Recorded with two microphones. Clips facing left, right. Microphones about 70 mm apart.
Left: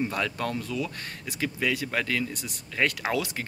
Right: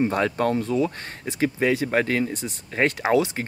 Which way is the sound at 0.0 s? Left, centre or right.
Right.